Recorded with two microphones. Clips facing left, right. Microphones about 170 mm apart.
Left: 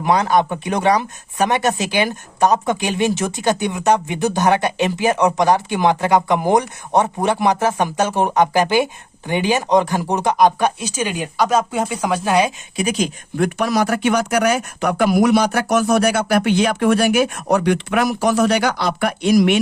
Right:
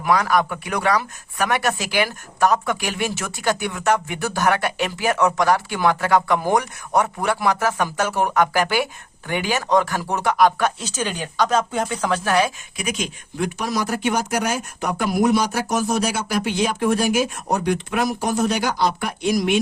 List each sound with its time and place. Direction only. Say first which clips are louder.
0.0 s speech: left 3 dB; 25° left (ahead or behind)
12.7 s speech: left 7 dB; 30° left (ahead or behind)
13.3 s speech: left 5 dB; 60° left (ahead or behind)